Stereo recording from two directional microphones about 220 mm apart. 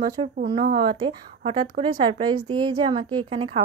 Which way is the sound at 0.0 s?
20° right (ahead or behind).